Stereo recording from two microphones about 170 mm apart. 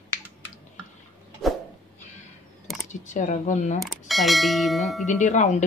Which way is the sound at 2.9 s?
45° left (ahead or behind).